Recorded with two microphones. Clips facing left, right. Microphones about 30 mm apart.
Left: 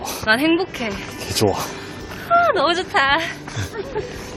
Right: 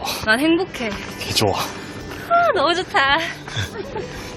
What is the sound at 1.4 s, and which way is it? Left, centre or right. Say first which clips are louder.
Speech: left 1 dB; right.